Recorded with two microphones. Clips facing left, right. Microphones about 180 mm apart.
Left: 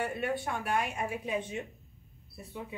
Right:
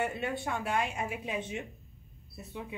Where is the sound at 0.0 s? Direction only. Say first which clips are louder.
Left 1 dB; 20° right (ahead or behind).